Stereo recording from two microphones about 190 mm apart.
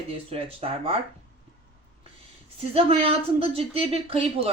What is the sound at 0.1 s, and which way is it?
Speech, 30° right (ahead or behind).